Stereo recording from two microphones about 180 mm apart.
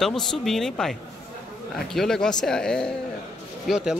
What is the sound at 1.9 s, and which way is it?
Speech, 5° left (ahead or behind).